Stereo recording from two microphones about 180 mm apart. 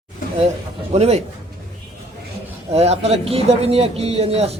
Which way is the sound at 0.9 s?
35° right (ahead or behind).